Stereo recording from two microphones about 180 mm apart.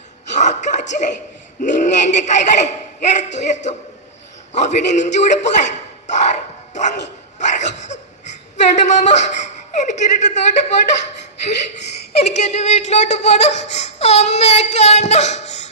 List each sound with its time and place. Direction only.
0.3 s speech: 40° left (ahead or behind)
7.3 s a sound: 40° left (ahead or behind)
12.1 s speech: 40° left (ahead or behind)